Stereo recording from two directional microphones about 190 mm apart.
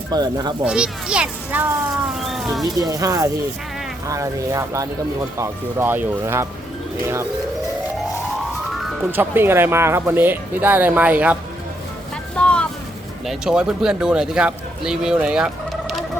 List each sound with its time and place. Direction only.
0.1 s speech: 20° right (ahead or behind)
0.6 s speech: 5° right (ahead or behind)
2.7 s speech: 20° right (ahead or behind)
8.8 s speech: 5° right (ahead or behind)
12.4 s vehicle: 5° left (ahead or behind)
13.2 s speech: 5° right (ahead or behind)